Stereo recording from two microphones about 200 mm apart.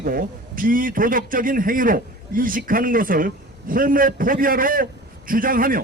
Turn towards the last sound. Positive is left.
turn(degrees=-45)  # may be behind; listen again after turning